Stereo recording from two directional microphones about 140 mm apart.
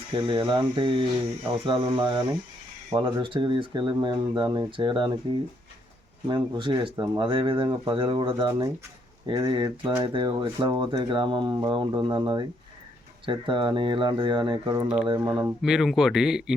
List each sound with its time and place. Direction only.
0.2 s speech: 35° right (ahead or behind)
6.2 s speech: 35° right (ahead or behind)
8.4 s speech: 25° right (ahead or behind)
15.6 s speech: 5° right (ahead or behind)